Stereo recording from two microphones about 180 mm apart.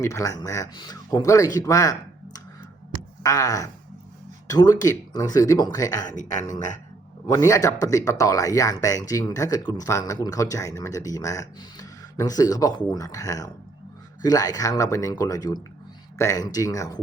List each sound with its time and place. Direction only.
0.0 s speech: 15° left (ahead or behind)
6.1 s speech: 45° left (ahead or behind)
7.3 s speech: 15° left (ahead or behind)